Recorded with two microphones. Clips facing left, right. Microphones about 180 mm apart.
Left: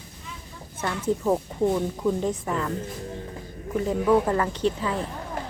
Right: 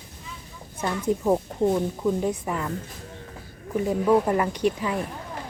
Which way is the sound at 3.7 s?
10° right (ahead or behind).